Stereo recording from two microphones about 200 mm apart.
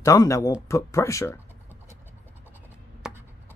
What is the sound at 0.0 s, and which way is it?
Speech, 15° left (ahead or behind).